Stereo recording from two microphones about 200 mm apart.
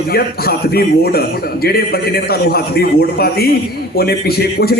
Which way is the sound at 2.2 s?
50° left (ahead or behind).